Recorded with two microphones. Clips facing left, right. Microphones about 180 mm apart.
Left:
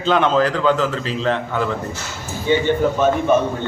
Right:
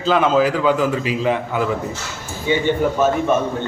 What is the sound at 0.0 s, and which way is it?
A man's voice, 5° right (ahead or behind).